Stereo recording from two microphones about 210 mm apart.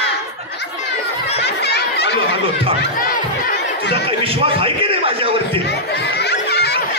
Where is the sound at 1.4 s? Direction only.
50° left (ahead or behind).